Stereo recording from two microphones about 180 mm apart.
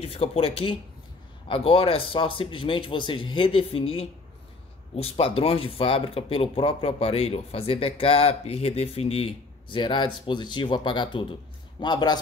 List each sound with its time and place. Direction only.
0.0 s a man's voice: 35° left (ahead or behind)